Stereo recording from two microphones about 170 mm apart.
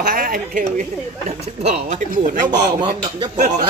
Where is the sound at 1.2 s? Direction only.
40° right (ahead or behind).